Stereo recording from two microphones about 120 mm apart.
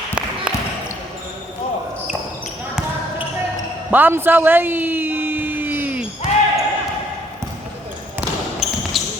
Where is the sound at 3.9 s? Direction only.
15° right (ahead or behind).